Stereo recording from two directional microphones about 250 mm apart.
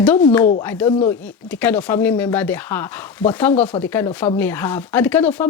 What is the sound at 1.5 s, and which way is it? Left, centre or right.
Speech, centre.